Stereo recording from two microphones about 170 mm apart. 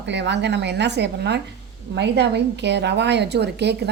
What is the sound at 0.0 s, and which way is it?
A woman's voice, 90° right.